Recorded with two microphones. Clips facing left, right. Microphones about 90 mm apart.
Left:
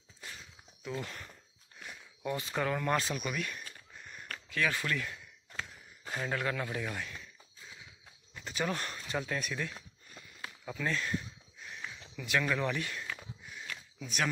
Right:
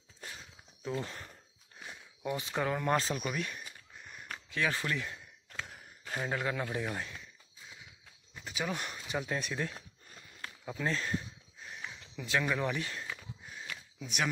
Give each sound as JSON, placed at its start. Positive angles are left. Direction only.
{"t": 1.0, "sound": "speech", "side_deg": -25}
{"t": 3.0, "sound": "speech", "side_deg": -30}
{"t": 3.6, "sound": "a sound", "side_deg": -15}
{"t": 6.1, "sound": "speech", "side_deg": -15}
{"t": 8.4, "sound": "speech", "side_deg": -5}
{"t": 10.6, "sound": "speech", "side_deg": -20}
{"t": 11.6, "sound": "a sound", "side_deg": -25}
{"t": 13.7, "sound": "sniff", "side_deg": -15}